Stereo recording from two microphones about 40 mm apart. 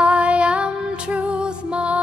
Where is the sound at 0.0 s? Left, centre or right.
Right.